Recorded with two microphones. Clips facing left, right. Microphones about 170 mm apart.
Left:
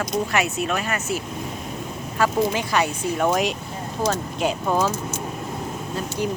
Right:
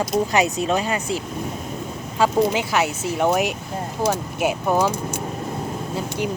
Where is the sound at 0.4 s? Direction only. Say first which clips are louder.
Right 3 dB; 40° right (ahead or behind).